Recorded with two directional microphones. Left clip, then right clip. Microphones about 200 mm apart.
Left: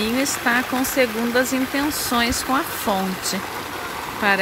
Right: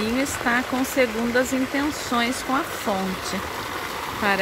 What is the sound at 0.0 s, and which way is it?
Speech, 5° left (ahead or behind).